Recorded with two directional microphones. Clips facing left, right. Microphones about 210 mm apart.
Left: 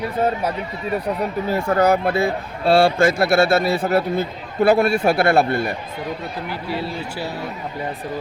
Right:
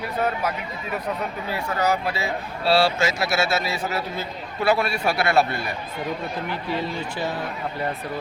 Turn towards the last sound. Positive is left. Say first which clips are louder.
# even
turn(degrees=10)  # may be behind; listen again after turning